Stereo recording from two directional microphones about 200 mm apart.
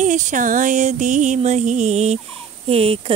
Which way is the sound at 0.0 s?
40° right (ahead or behind).